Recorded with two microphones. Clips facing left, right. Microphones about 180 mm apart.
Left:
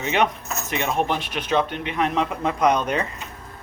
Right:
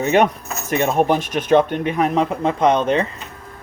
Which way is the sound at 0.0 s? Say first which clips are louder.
Right 6 dB; 45° right (ahead or behind).